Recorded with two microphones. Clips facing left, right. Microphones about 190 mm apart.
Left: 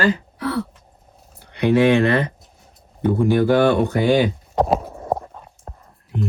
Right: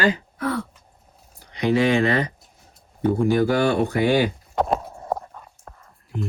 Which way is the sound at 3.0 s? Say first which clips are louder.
Left 2 dB; centre (ahead or behind).